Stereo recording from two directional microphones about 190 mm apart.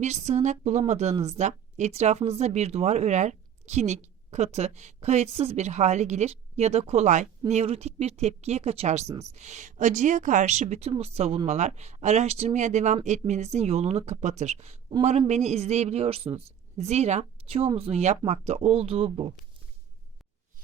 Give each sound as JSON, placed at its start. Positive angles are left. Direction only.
{"t": 0.0, "sound": "speech", "side_deg": -35}